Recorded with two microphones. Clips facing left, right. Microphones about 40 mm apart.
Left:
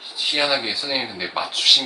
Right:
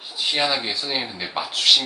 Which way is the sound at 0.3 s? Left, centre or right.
Centre.